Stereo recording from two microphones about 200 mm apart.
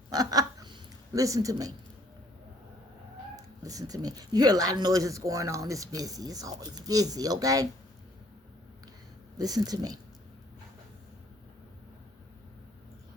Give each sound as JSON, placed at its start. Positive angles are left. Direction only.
{"t": 0.1, "sound": "a sound", "side_deg": -20}
{"t": 3.3, "sound": "speech", "side_deg": -15}
{"t": 9.4, "sound": "speech", "side_deg": -20}